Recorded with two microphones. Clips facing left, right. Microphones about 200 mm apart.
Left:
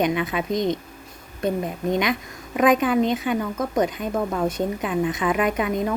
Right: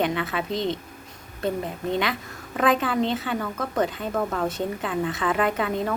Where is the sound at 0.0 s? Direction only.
15° left (ahead or behind).